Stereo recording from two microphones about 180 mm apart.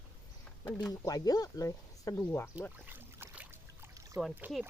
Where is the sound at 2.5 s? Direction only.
10° right (ahead or behind).